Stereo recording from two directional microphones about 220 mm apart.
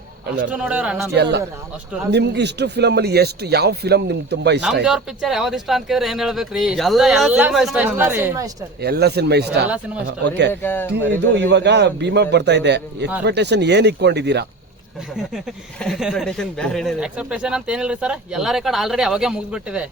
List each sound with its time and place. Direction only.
0.5 s a man's voice: 5° right (ahead or behind)
1.1 s speech: 50° right (ahead or behind)
4.6 s a man's voice: centre (ahead or behind)
8.8 s speech: 45° right (ahead or behind)
9.6 s speech: 5° right (ahead or behind)
10.1 s speech: 50° right (ahead or behind)
10.5 s speech: 10° left (ahead or behind)
11.3 s speech: 50° right (ahead or behind)
15.1 s a man's voice: centre (ahead or behind)